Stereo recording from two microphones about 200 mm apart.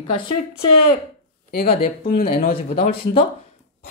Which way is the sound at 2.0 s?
45° left (ahead or behind).